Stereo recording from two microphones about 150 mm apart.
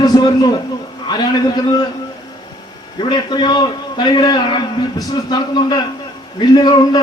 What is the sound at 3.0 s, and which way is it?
A man's voice, 30° left (ahead or behind).